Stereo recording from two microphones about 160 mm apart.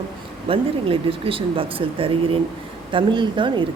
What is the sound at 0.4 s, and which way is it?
Speech, 35° right (ahead or behind).